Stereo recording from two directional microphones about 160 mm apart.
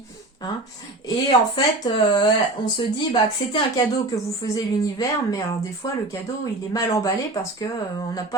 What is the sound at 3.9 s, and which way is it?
Speech, 20° left (ahead or behind).